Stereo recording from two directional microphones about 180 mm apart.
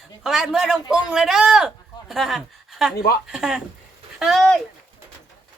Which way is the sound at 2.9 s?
60° left (ahead or behind).